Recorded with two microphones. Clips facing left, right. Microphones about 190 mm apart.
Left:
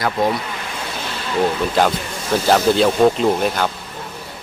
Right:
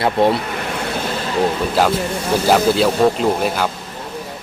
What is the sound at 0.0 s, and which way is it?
Speech, 30° right (ahead or behind).